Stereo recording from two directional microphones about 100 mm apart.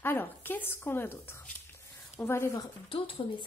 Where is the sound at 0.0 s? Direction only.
20° left (ahead or behind).